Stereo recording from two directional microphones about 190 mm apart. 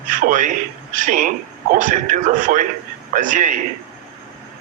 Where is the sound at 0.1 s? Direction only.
45° right (ahead or behind).